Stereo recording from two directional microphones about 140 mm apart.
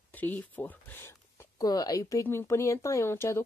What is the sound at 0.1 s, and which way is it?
A woman's voice, 10° left (ahead or behind).